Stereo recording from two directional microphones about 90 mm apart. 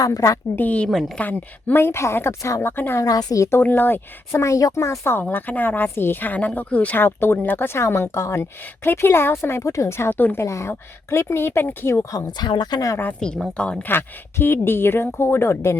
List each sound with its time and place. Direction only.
0.0 s a woman's voice: 40° left (ahead or behind)
0.5 s a woman's voice: 15° left (ahead or behind)
0.9 s a woman's voice: centre (ahead or behind)
1.2 s a woman's voice: 20° left (ahead or behind)
3.0 s a woman's voice: 45° left (ahead or behind)
3.6 s a woman's voice: 20° left (ahead or behind)
5.2 s a woman's voice: 20° left (ahead or behind)
10.4 s a woman's voice: 35° left (ahead or behind)
12.4 s speech: 55° left (ahead or behind)
13.1 s a woman's voice: 10° left (ahead or behind)
13.8 s a woman's voice: 25° left (ahead or behind)